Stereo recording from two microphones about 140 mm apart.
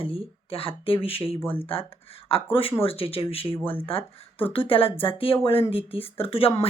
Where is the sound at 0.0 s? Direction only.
40° left (ahead or behind).